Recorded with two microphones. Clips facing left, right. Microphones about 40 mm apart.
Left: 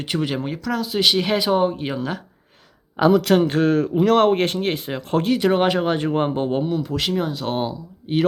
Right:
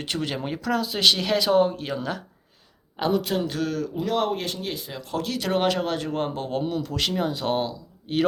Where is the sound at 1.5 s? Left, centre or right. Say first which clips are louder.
Left 1 dB; centre.